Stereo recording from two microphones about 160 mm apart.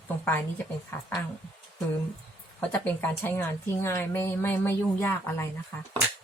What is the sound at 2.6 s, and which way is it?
A woman's voice, 10° left (ahead or behind).